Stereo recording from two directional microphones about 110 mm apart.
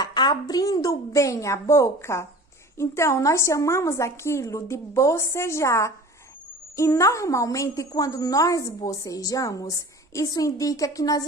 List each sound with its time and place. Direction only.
0.0 s a woman's voice: 40° left (ahead or behind)